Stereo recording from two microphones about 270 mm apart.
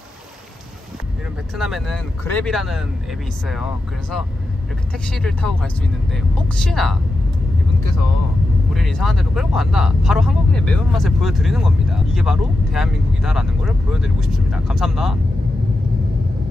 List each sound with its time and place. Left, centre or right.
1.6 s speech: centre
8.7 s speech: centre